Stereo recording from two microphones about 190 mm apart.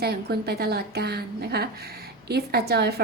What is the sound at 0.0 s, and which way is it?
A woman's voice, 60° right (ahead or behind).